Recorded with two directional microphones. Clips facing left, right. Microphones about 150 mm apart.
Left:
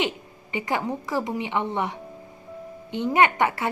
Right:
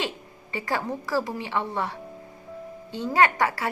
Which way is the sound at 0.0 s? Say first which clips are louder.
Left 4 dB; 20° left (ahead or behind).